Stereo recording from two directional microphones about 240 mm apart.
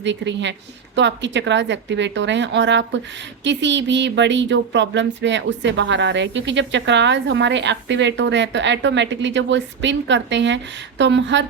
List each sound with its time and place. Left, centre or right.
0.0 s speech: right